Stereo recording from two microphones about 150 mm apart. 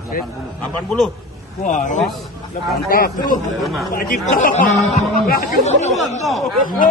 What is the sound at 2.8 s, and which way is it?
Speech, 75° left (ahead or behind).